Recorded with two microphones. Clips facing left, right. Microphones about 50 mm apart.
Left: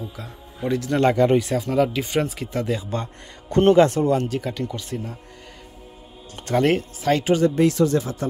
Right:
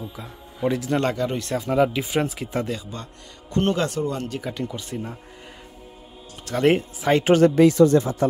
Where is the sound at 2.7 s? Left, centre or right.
Centre.